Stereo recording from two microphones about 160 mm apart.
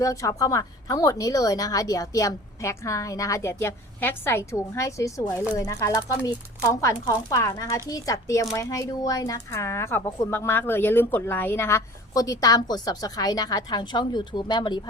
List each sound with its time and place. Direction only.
0.0 s speech: 20° left (ahead or behind)